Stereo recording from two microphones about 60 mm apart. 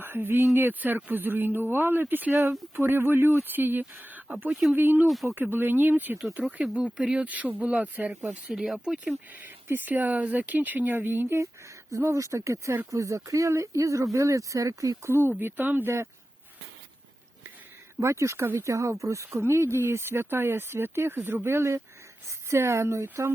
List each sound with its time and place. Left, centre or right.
0.0 s speech: right
2.3 s speech: right
2.7 s speech: right
5.0 s speech: centre
5.3 s speech: right
6.6 s speech: right
8.3 s speech: centre
9.6 s speech: right
12.1 s speech: right
15.3 s speech: right
18.0 s speech: right